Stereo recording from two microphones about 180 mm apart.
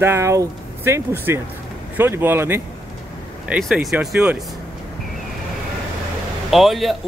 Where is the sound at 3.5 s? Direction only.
Centre (ahead or behind).